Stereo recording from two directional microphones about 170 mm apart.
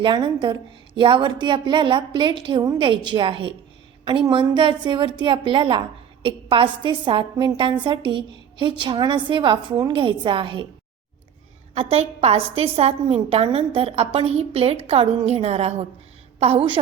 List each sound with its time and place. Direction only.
0.0 s a woman's voice: 25° right (ahead or behind)
11.7 s a woman's voice: 35° right (ahead or behind)